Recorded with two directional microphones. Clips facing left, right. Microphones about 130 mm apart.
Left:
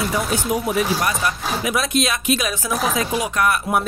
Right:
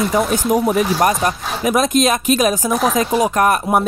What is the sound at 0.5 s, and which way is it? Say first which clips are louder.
Speech: right 5 dB; 45° right (ahead or behind).